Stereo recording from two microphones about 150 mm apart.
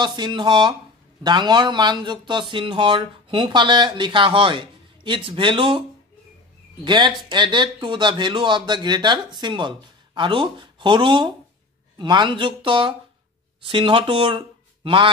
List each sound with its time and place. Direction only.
0.0 s speech: 30° right (ahead or behind)